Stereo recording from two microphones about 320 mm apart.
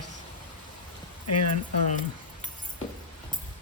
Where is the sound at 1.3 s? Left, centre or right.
Left.